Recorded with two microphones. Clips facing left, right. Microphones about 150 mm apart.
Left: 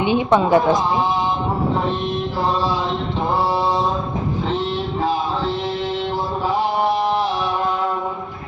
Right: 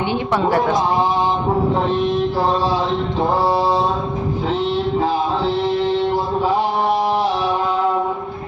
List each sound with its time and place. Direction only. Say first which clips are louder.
0.0 s a woman's voice: left 2 dB; 15° left (ahead or behind)